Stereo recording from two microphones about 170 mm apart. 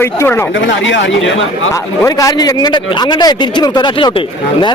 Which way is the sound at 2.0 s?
20° left (ahead or behind).